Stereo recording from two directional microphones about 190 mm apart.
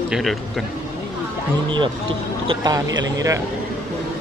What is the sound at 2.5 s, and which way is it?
Speech, 20° right (ahead or behind).